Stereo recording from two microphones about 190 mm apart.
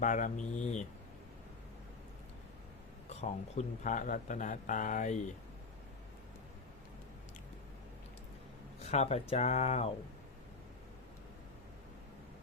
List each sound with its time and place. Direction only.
0.0 s speech: 40° left (ahead or behind)
3.1 s speech: 35° left (ahead or behind)
8.8 s speech: 35° left (ahead or behind)